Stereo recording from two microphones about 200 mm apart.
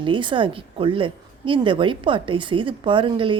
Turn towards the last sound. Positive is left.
turn(degrees=-25)  # may be behind; listen again after turning